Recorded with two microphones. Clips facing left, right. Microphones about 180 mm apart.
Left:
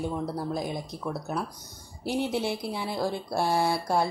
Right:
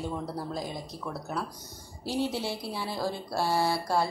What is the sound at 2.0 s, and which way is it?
Speech, 20° left (ahead or behind).